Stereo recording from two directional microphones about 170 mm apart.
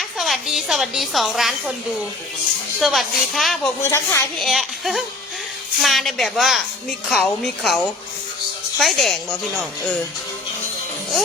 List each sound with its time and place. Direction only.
0.2 s a woman's voice: centre (ahead or behind)
2.8 s a woman's voice: centre (ahead or behind)
3.8 s a woman's voice: 15° left (ahead or behind)
4.4 s a woman's voice: centre (ahead or behind)
8.8 s a woman's voice: centre (ahead or behind)